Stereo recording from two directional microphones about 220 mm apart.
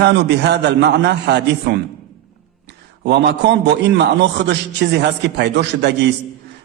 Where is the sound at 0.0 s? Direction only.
50° right (ahead or behind).